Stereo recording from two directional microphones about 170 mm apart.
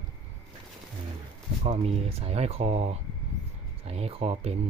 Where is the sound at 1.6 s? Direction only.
35° right (ahead or behind).